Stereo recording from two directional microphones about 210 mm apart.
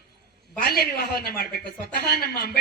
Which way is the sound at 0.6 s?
45° left (ahead or behind).